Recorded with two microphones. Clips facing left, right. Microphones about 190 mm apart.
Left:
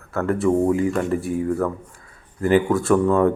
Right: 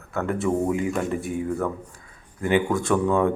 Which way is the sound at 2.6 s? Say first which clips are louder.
Left 4 dB; centre (ahead or behind).